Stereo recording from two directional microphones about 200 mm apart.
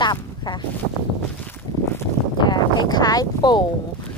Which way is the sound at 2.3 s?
20° left (ahead or behind).